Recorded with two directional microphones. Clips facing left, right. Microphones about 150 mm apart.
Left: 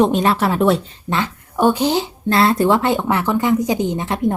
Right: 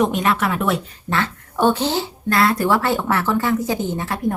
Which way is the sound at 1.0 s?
15° left (ahead or behind).